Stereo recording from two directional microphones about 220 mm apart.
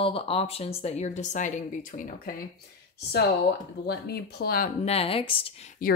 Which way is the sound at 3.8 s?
45° left (ahead or behind).